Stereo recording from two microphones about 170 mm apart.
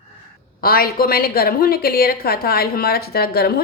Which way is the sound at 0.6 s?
60° left (ahead or behind).